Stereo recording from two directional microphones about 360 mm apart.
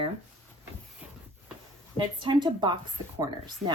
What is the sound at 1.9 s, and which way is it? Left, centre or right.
Speech, centre.